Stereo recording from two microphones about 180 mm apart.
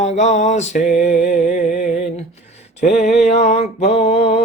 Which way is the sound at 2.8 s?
40° left (ahead or behind).